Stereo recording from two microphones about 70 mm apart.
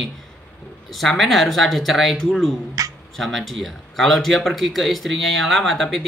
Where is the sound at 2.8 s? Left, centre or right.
Right.